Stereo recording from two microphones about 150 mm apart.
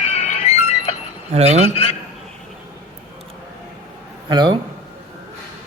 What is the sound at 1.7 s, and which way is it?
Speech, 40° left (ahead or behind).